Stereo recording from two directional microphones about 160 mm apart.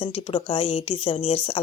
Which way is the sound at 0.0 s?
35° left (ahead or behind).